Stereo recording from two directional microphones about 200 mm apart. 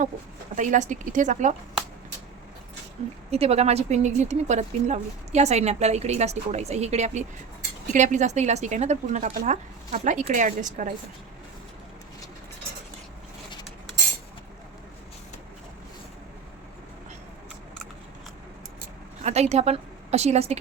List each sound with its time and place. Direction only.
0.5 s speech: 40° right (ahead or behind)
3.2 s speech: 30° right (ahead or behind)
19.2 s a woman's voice: 35° right (ahead or behind)